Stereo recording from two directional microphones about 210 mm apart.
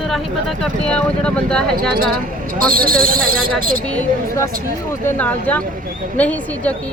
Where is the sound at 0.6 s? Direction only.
5° left (ahead or behind).